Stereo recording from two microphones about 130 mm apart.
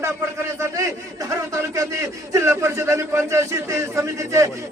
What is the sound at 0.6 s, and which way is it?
A man's voice, 25° right (ahead or behind).